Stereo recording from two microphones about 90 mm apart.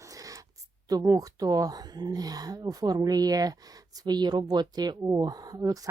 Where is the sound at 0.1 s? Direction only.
40° right (ahead or behind).